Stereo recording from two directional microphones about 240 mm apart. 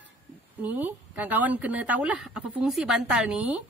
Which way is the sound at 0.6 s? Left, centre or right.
Centre.